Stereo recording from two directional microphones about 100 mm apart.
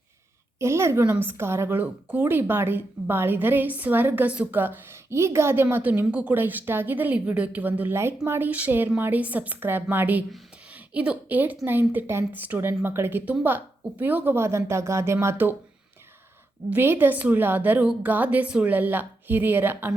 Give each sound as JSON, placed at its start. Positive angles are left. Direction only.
{"t": 0.6, "sound": "a woman's voice", "side_deg": -25}
{"t": 16.6, "sound": "a woman's voice", "side_deg": -20}